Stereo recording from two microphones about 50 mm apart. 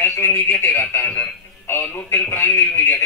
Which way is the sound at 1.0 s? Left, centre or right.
Left.